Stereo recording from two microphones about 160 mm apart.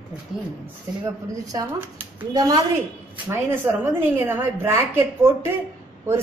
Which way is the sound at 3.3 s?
15° right (ahead or behind).